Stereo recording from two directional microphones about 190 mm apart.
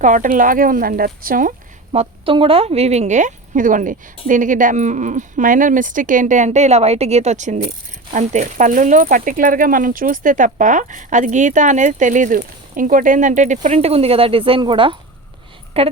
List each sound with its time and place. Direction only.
0.0 s speech: 40° right (ahead or behind)
1.9 s speech: 30° right (ahead or behind)